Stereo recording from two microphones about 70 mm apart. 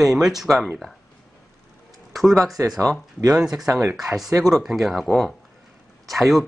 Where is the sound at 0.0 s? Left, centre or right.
Centre.